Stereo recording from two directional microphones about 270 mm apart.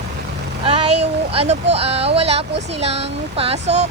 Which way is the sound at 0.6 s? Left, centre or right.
Centre.